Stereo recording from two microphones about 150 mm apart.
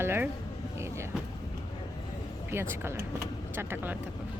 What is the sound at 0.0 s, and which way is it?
Speech, 15° right (ahead or behind).